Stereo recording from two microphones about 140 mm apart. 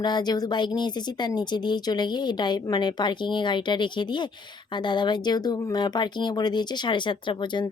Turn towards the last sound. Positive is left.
turn(degrees=35)  # may be behind; listen again after turning